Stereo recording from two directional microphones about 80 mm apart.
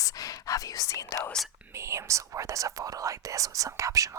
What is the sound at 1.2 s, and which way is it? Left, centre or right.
Whispering, centre.